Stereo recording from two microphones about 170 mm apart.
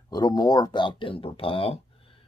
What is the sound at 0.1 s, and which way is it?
Speech, 25° left (ahead or behind).